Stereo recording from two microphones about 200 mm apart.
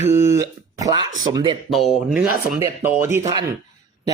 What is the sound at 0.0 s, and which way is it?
Speech, 35° left (ahead or behind).